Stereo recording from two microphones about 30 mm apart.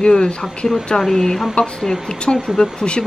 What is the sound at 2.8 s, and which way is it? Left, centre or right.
Speech, left.